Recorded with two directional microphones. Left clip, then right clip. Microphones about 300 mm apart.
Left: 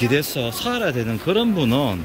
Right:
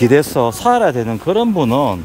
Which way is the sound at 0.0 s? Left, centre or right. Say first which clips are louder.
Right 9 dB; centre.